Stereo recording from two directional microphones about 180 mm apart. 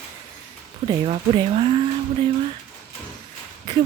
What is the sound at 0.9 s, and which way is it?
Speech, 25° right (ahead or behind).